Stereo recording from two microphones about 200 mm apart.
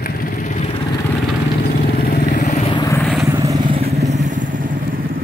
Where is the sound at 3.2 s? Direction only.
20° right (ahead or behind).